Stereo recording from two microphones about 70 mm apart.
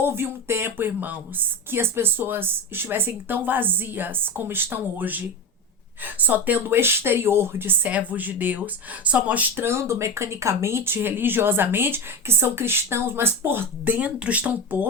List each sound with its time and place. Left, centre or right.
0.0 s speech: right
9.6 s speech: right